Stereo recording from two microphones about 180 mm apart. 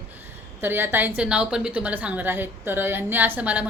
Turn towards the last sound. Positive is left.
turn(degrees=-10)  # may be behind; listen again after turning